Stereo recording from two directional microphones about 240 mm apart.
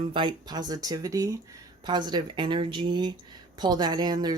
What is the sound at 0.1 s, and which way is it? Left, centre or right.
Speech, centre.